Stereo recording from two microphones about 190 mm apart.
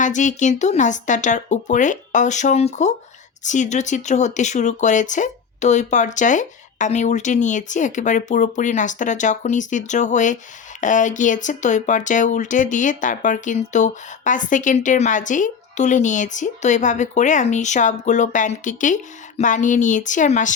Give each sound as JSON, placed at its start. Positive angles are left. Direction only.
{"t": 0.0, "sound": "speech", "side_deg": 40}